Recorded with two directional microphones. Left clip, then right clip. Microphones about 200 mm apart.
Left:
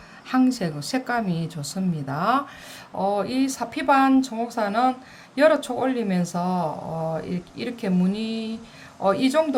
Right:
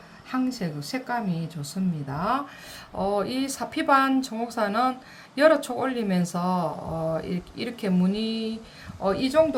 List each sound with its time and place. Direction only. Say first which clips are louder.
0.3 s speech: left 6 dB; 20° left (ahead or behind)
3.0 s speech: left 3 dB; centre (ahead or behind)